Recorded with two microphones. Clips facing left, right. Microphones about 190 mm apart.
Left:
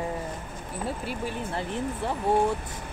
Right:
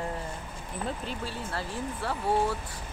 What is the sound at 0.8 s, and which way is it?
Speech, 10° left (ahead or behind).